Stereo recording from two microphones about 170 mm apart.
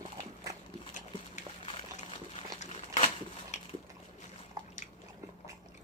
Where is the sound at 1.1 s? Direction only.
35° left (ahead or behind).